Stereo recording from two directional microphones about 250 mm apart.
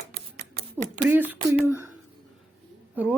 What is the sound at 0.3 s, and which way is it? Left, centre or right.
Rodents, right.